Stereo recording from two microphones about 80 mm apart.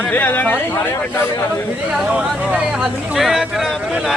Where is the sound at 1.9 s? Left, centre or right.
Centre.